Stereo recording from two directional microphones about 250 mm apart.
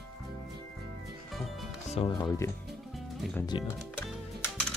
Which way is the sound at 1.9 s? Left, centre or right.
Centre.